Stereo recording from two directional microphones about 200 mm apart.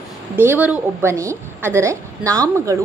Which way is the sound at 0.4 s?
10° right (ahead or behind).